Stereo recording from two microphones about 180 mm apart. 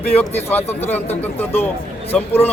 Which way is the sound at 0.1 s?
10° left (ahead or behind).